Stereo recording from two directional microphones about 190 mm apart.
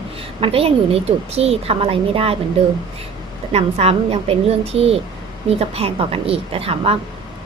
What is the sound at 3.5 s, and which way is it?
A woman's voice, 35° right (ahead or behind).